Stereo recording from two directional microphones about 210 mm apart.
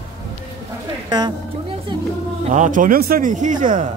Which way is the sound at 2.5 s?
35° right (ahead or behind).